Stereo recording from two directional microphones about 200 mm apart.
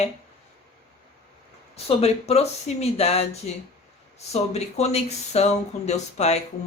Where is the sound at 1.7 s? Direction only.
30° left (ahead or behind).